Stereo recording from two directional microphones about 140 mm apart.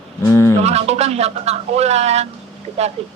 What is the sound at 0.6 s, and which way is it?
Speech, 50° right (ahead or behind).